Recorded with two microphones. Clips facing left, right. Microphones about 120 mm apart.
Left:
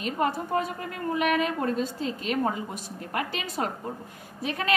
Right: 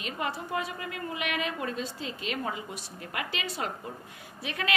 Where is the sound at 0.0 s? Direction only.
40° left (ahead or behind).